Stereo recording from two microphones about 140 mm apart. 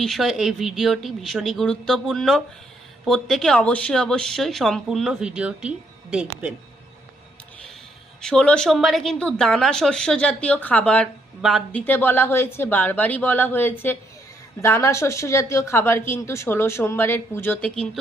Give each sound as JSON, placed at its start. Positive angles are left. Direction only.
{"t": 0.0, "sound": "speech", "side_deg": 0}
{"t": 8.2, "sound": "speech", "side_deg": 5}
{"t": 11.7, "sound": "speech", "side_deg": 15}